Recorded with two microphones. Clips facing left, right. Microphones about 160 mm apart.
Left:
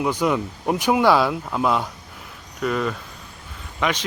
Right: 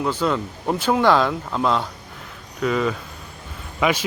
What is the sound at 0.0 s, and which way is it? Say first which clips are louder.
Speech: left 1 dB; 15° left (ahead or behind).